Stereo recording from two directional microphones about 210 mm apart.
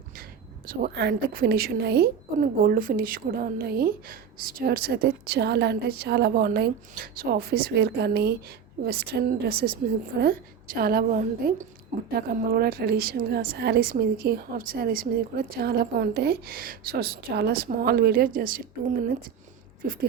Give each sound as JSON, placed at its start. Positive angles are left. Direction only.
{"t": 0.7, "sound": "a woman's voice", "side_deg": -45}
{"t": 19.8, "sound": "a woman's voice", "side_deg": -45}